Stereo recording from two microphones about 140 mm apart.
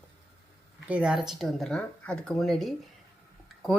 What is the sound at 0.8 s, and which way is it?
Speech, 10° right (ahead or behind).